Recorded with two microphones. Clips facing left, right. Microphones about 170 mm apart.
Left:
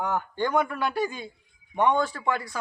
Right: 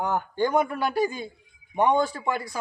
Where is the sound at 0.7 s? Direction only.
40° right (ahead or behind).